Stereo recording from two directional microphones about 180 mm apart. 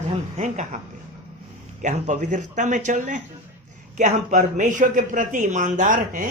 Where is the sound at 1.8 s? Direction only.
40° right (ahead or behind).